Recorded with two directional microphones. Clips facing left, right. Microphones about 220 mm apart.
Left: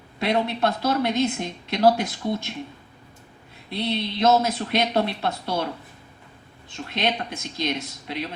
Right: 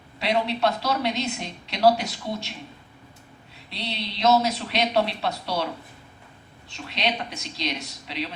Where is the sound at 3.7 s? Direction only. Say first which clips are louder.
Left 7 dB; 50° left (ahead or behind).